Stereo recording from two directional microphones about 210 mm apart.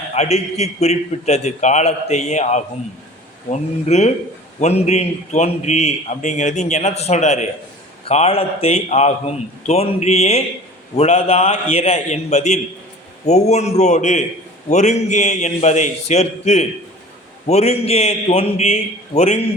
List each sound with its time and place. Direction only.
0.1 s a man's voice: 30° left (ahead or behind)